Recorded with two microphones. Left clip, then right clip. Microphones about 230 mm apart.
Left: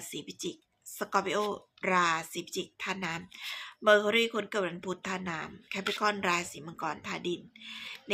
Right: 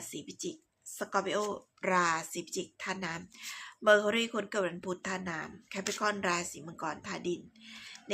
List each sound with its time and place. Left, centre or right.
0.0 s speech: centre